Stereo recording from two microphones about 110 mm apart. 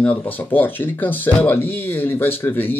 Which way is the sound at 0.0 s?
15° left (ahead or behind).